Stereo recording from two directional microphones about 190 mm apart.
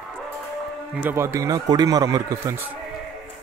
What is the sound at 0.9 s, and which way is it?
A man's voice, 10° right (ahead or behind).